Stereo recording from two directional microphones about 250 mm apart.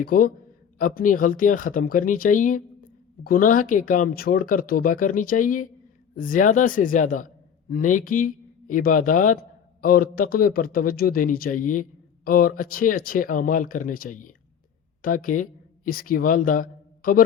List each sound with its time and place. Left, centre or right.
0.0 s speech: left